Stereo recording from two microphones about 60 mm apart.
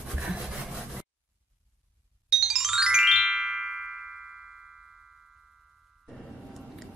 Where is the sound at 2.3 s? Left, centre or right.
Centre.